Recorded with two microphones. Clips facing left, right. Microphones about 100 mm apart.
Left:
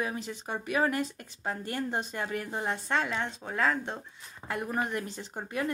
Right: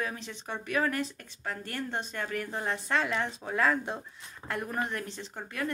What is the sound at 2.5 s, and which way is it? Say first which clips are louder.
Speech: even; 5° left (ahead or behind).